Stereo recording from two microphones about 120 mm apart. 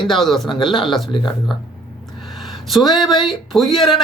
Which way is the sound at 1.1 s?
40° left (ahead or behind).